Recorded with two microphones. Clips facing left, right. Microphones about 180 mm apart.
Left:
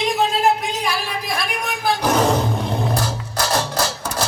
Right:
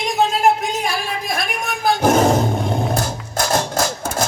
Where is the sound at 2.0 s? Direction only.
45° right (ahead or behind).